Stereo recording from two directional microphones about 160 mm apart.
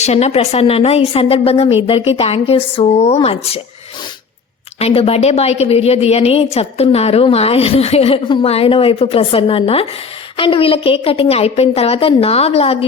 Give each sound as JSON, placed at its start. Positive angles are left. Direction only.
{"t": 0.0, "sound": "a woman's voice", "side_deg": 40}
{"t": 4.8, "sound": "a woman's voice", "side_deg": 35}